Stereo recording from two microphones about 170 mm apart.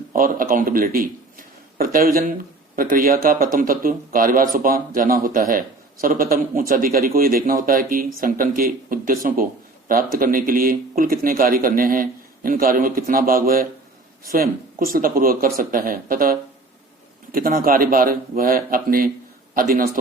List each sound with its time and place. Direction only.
0.1 s a man's voice: 55° right (ahead or behind)